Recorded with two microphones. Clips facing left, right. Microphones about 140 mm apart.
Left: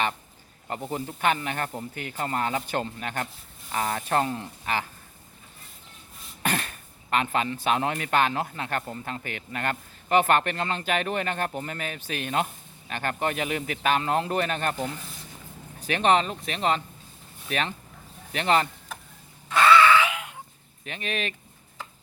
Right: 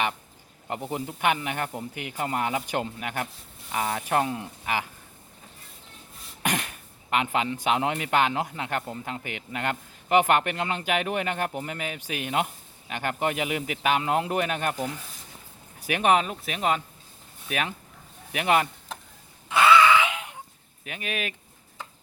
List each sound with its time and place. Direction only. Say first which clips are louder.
0.7 s speech: even; 15° right (ahead or behind)
6.4 s speech: even; 15° right (ahead or behind)
19.5 s a sound: even; 15° right (ahead or behind)
20.8 s speech: left 1 dB; 10° right (ahead or behind)